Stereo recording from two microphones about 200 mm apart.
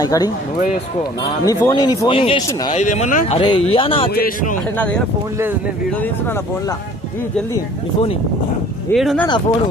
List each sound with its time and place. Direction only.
0.0 s speech: 20° left (ahead or behind)
1.4 s speech: 20° left (ahead or behind)
2.7 s speech: 35° left (ahead or behind)
3.3 s speech: 25° left (ahead or behind)
4.1 s speech: 45° left (ahead or behind)
4.7 s speech: 5° left (ahead or behind)
8.9 s speech: centre (ahead or behind)